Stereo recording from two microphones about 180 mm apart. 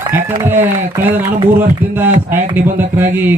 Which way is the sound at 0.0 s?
10° right (ahead or behind).